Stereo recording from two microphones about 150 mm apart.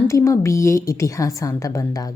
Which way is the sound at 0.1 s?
20° left (ahead or behind).